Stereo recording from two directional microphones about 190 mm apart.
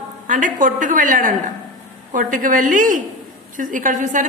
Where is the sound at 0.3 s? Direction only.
45° right (ahead or behind).